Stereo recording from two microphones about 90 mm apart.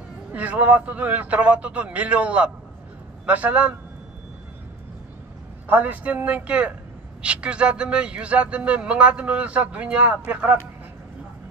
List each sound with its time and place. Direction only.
0.3 s speech: 15° right (ahead or behind)
5.7 s speech: 15° right (ahead or behind)